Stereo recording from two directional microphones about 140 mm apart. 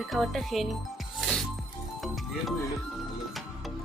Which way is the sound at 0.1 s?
Centre (ahead or behind).